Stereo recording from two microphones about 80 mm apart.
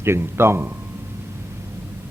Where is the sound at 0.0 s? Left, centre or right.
Right.